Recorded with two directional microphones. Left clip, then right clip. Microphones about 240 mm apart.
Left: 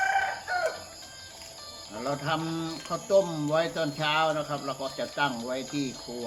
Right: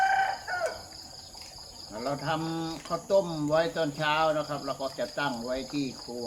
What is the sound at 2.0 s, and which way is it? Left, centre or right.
Speech, centre.